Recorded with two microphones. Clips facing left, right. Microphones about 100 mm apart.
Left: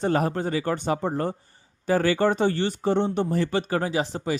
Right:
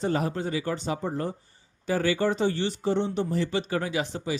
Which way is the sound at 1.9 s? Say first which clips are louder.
Left 4 dB; 50° left (ahead or behind).